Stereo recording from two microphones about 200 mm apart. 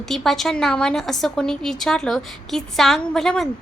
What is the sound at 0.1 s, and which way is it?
A woman's voice, centre (ahead or behind).